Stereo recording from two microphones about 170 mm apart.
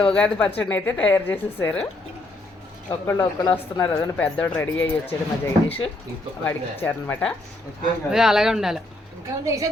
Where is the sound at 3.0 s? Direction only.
15° left (ahead or behind).